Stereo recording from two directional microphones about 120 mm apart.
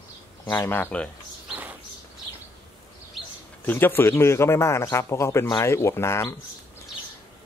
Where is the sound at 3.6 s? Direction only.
15° left (ahead or behind).